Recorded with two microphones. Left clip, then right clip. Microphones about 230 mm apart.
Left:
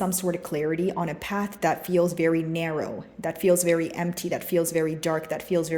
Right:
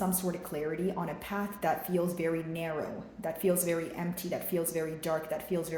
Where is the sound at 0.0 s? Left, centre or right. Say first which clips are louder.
Left 7 dB; left.